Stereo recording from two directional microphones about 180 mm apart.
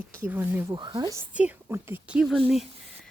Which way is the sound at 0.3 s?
10° right (ahead or behind).